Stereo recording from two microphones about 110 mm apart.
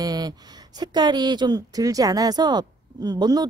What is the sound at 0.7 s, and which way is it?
Speech, 40° right (ahead or behind).